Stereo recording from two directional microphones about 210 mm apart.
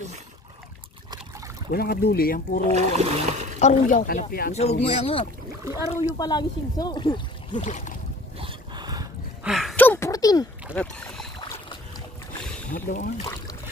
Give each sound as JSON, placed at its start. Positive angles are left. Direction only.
{"t": 1.7, "sound": "speech", "side_deg": 45}
{"t": 2.7, "sound": "speech", "side_deg": -35}
{"t": 3.5, "sound": "speech", "side_deg": 35}
{"t": 4.6, "sound": "speech", "side_deg": 30}
{"t": 7.5, "sound": "speech", "side_deg": 35}
{"t": 8.4, "sound": "boat", "side_deg": -20}
{"t": 9.4, "sound": "a sound", "side_deg": 0}
{"t": 10.8, "sound": "boat", "side_deg": 5}
{"t": 11.3, "sound": "boat", "side_deg": 25}
{"t": 12.7, "sound": "speech", "side_deg": 40}